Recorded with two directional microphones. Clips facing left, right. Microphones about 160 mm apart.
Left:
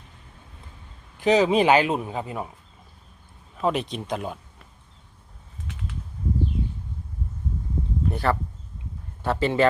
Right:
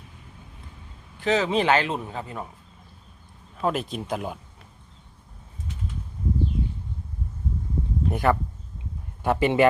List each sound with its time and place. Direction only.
1.2 s speech: 15° left (ahead or behind)
3.6 s speech: centre (ahead or behind)
8.1 s a man's voice: 15° right (ahead or behind)